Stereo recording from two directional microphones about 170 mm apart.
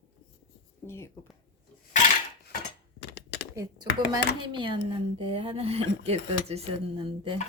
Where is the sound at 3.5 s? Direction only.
20° right (ahead or behind).